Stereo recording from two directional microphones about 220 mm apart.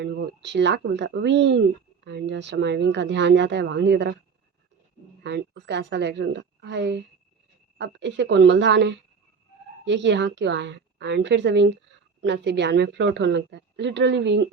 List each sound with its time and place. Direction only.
0.0 s a woman's voice: 55° right (ahead or behind)
5.2 s a woman's voice: 50° right (ahead or behind)